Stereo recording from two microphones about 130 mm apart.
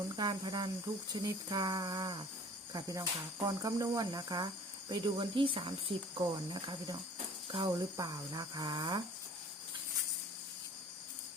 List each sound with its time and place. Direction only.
0.2 s speech: 35° right (ahead or behind)